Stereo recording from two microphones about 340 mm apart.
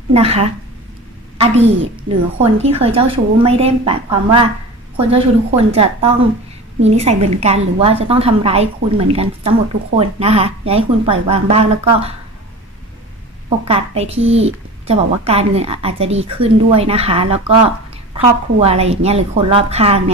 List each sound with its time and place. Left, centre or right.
0.1 s a woman's voice: centre
5.7 s a woman's voice: centre
13.7 s a woman's voice: centre